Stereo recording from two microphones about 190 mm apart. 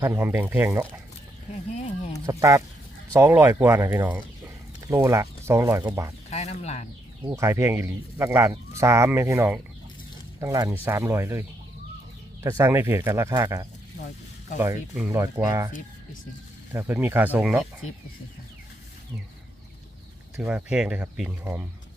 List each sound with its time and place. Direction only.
0.0 s speech: 15° right (ahead or behind)
1.8 s a sound: 35° left (ahead or behind)
2.2 s speech: 15° right (ahead or behind)
6.3 s speech: 35° left (ahead or behind)
7.3 s speech: 15° right (ahead or behind)
16.7 s speech: 10° right (ahead or behind)
20.3 s speech: 5° right (ahead or behind)